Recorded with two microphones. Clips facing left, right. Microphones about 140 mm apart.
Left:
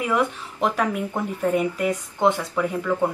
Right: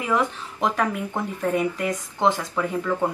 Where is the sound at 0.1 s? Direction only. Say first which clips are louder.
Left 1 dB; 5° left (ahead or behind).